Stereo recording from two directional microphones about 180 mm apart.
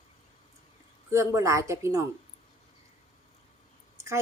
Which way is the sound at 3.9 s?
15° right (ahead or behind).